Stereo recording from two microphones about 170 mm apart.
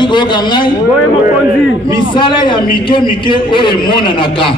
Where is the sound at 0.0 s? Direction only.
30° left (ahead or behind).